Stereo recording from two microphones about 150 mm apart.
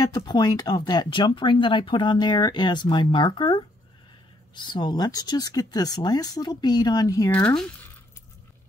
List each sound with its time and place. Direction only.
0.0 s speech: 30° left (ahead or behind)
7.2 s speech: 10° left (ahead or behind)